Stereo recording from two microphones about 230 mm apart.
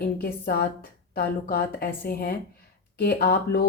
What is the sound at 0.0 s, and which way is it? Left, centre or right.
Speech, left.